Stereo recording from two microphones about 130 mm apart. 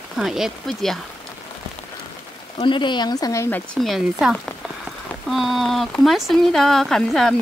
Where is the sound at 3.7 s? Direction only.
Centre (ahead or behind).